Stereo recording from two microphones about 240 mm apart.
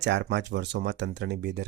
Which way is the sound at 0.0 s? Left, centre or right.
Right.